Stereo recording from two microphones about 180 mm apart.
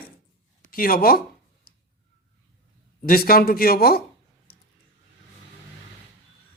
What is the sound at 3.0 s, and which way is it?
Speech, 55° left (ahead or behind).